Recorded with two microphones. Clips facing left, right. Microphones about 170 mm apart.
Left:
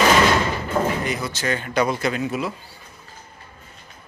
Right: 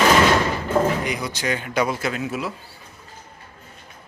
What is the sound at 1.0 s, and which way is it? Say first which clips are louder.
Speech: even; 15° right (ahead or behind).